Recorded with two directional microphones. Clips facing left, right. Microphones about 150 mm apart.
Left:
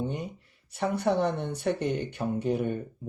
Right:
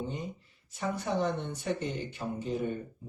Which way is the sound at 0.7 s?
65° left (ahead or behind).